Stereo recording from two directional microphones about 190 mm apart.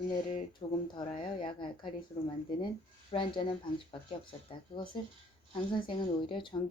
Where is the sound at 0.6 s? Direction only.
35° left (ahead or behind).